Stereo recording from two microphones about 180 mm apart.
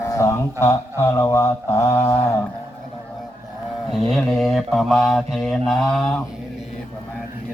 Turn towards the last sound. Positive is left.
turn(degrees=5)  # may be behind; listen again after turning